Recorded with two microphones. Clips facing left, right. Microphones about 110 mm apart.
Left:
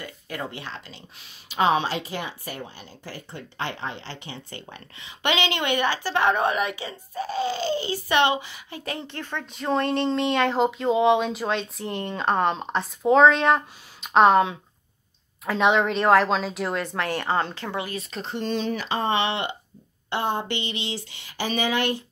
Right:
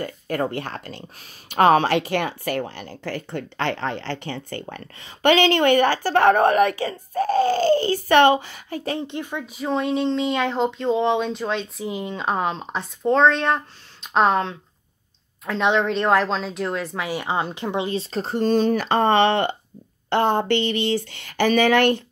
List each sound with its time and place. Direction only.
0.0 s a child's voice: 45° right (ahead or behind)
8.9 s speech: 20° right (ahead or behind)
18.2 s a child's voice: 45° right (ahead or behind); by 22.0 s 60° right (ahead or behind)